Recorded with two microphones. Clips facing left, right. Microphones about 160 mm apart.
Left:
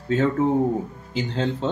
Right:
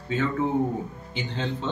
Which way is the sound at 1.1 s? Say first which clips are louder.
Left 6 dB; 40° left (ahead or behind).